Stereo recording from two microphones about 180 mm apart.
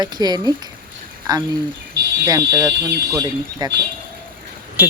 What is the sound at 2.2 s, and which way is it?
Speech, 20° right (ahead or behind).